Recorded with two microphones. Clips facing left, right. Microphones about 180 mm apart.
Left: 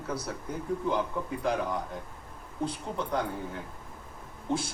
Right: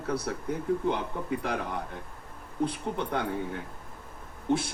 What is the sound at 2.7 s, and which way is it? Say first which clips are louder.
A man's voice: right 1 dB; 65° right (ahead or behind).